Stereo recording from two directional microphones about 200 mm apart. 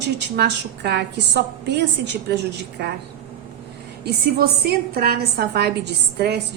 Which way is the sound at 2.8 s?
55° right (ahead or behind).